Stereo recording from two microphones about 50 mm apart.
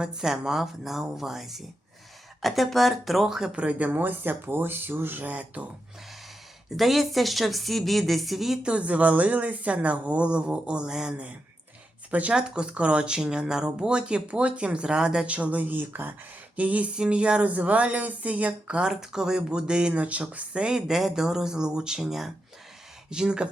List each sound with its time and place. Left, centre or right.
0.0 s speech: centre
3.5 s speech: right
6.7 s speech: centre
8.6 s speech: right
12.3 s speech: centre; by 16.1 s right
16.6 s speech: right
18.8 s speech: centre